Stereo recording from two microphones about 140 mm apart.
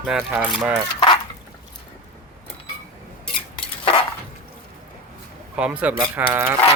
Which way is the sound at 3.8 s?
40° left (ahead or behind).